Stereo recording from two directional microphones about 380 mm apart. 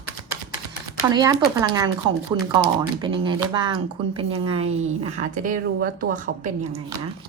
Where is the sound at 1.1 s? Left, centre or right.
Centre.